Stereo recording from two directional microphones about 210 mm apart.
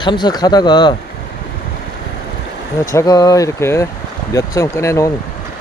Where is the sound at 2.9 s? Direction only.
15° left (ahead or behind).